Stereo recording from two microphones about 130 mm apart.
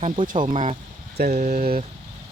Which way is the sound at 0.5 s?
70° right (ahead or behind).